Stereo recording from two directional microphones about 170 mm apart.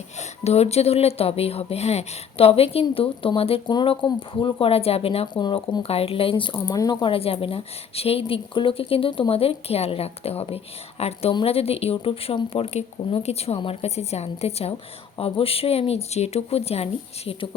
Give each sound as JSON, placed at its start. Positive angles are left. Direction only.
{"t": 0.2, "sound": "speech", "side_deg": 40}